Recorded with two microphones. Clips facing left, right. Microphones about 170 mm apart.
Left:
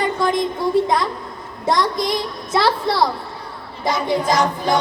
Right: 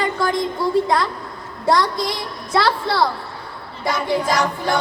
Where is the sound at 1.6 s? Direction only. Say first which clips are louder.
Right 1 dB; 20° left (ahead or behind).